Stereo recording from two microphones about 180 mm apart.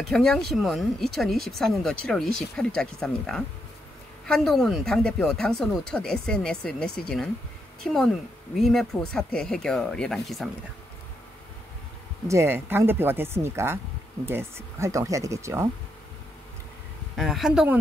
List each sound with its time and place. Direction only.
0.0 s speech: centre (ahead or behind)
12.3 s speech: 15° right (ahead or behind)
17.2 s speech: centre (ahead or behind)